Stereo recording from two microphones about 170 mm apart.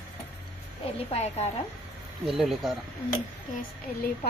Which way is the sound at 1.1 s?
40° left (ahead or behind).